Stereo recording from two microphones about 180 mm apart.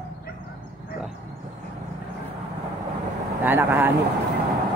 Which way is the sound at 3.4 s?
10° right (ahead or behind).